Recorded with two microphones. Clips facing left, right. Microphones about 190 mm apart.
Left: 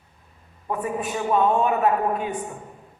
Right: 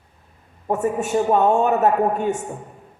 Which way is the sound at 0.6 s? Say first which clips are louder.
Right 5 dB; 45° right (ahead or behind).